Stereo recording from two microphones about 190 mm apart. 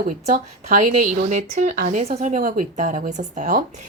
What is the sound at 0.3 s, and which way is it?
Speech, 40° right (ahead or behind).